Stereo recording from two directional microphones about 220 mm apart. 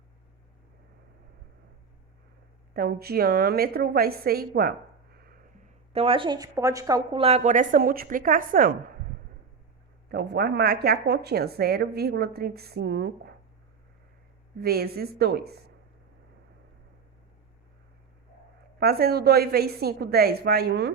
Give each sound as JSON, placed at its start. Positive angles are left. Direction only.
{"t": 2.7, "sound": "a woman's voice", "side_deg": -45}
{"t": 5.1, "sound": "a sound", "side_deg": -45}
{"t": 5.9, "sound": "speech", "side_deg": -25}
{"t": 10.1, "sound": "a woman's voice", "side_deg": -45}
{"t": 14.6, "sound": "a woman's voice", "side_deg": -45}
{"t": 18.8, "sound": "a woman's voice", "side_deg": -45}